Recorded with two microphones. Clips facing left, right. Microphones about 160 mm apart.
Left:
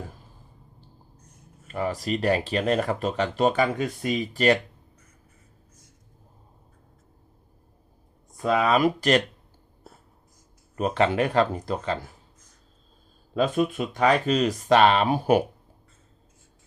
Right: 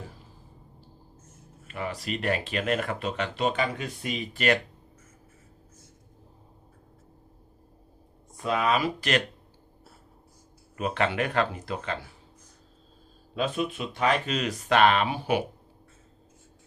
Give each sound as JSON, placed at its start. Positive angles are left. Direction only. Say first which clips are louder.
{"t": 1.6, "sound": "speech", "louder": "left 5 dB", "side_deg": 40}
{"t": 8.4, "sound": "speech", "louder": "left 4 dB", "side_deg": 45}
{"t": 10.8, "sound": "speech", "louder": "left 5 dB", "side_deg": 35}
{"t": 13.3, "sound": "speech", "louder": "left 5 dB", "side_deg": 45}
{"t": 15.0, "sound": "speech", "louder": "left 6 dB", "side_deg": 45}